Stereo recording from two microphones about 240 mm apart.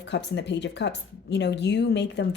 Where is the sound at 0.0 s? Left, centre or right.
Left.